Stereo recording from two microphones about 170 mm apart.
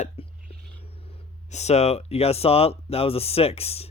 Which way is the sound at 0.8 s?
35° left (ahead or behind).